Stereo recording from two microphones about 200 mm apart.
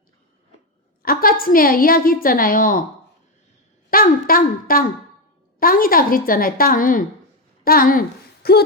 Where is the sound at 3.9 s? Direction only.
45° left (ahead or behind).